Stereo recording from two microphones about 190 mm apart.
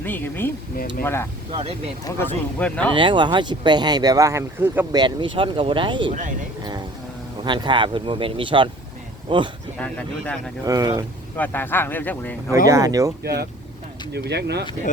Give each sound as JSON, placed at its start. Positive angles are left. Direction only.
{"t": 0.0, "sound": "speech", "side_deg": 10}
{"t": 1.5, "sound": "speech", "side_deg": -30}
{"t": 2.0, "sound": "speech", "side_deg": 10}
{"t": 2.9, "sound": "speech", "side_deg": -25}
{"t": 4.9, "sound": "speech", "side_deg": -25}
{"t": 6.6, "sound": "vehicle", "side_deg": -20}
{"t": 7.4, "sound": "speech", "side_deg": -25}
{"t": 9.7, "sound": "speech", "side_deg": 5}
{"t": 10.7, "sound": "speech", "side_deg": -20}
{"t": 11.3, "sound": "speech", "side_deg": 10}
{"t": 12.6, "sound": "speech", "side_deg": -15}
{"t": 13.2, "sound": "speech", "side_deg": -55}